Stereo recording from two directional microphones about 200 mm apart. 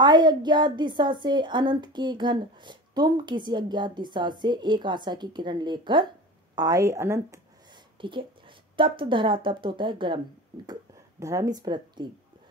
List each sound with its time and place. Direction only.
0.0 s a woman's voice: 20° right (ahead or behind)
8.0 s a woman's voice: 25° right (ahead or behind)